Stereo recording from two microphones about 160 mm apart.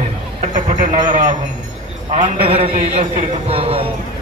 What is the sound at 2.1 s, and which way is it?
A man's voice, 40° right (ahead or behind).